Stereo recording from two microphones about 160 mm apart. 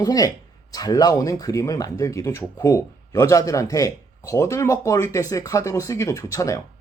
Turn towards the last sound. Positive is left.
turn(degrees=20)  # may be behind; listen again after turning